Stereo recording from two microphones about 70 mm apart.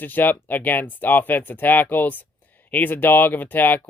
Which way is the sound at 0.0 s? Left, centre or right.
Left.